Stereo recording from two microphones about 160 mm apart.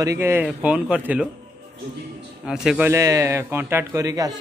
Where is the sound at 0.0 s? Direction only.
15° right (ahead or behind).